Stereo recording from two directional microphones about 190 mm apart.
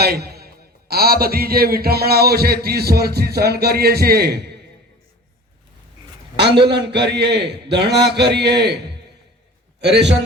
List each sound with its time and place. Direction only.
0.0 s a man's voice: 55° right (ahead or behind)
6.6 s a man's voice: 60° right (ahead or behind)
9.8 s a man's voice: 60° right (ahead or behind)